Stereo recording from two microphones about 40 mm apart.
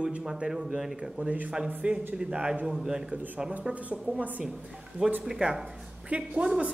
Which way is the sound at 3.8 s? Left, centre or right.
Right.